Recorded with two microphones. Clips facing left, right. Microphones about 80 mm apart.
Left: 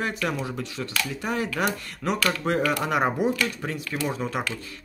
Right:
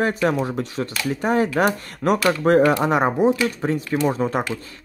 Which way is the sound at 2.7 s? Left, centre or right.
Right.